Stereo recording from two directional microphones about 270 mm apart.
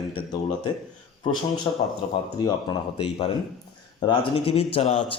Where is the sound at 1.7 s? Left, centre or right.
Centre.